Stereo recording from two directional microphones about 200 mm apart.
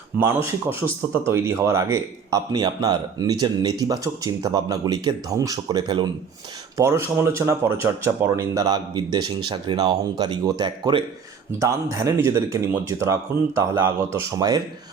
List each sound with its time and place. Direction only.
0.2 s a man's voice: 10° right (ahead or behind)